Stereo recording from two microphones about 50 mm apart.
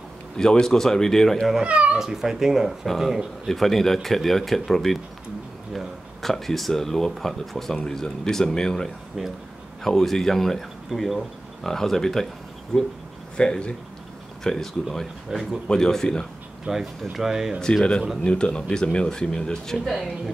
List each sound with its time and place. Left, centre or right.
0.4 s speech: centre
1.6 s speech: right
2.0 s speech: centre
3.4 s speech: centre
14.4 s speech: centre
15.3 s speech: centre
15.7 s speech: centre
16.7 s speech: centre
17.0 s speech: centre
18.2 s speech: left
19.8 s speech: centre